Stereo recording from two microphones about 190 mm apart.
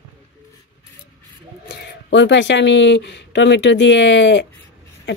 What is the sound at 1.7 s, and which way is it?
Speech, 65° left (ahead or behind).